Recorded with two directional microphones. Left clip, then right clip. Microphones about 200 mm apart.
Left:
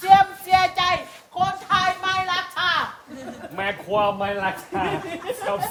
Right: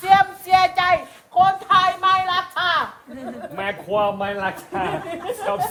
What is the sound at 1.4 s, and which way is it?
Music, 20° right (ahead or behind).